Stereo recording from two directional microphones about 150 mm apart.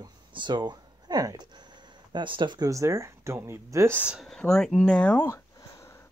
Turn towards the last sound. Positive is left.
turn(degrees=15)  # may be behind; listen again after turning